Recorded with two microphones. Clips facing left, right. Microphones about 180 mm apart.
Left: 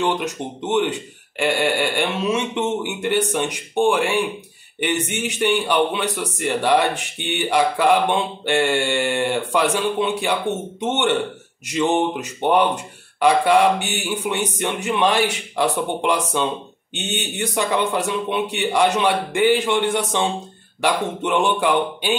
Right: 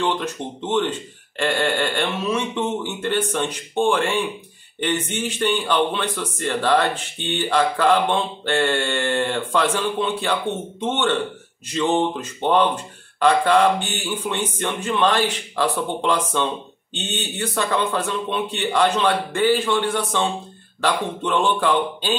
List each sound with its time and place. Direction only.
0.6 s mantra: 15° left (ahead or behind)
5.4 s mantra: 15° left (ahead or behind)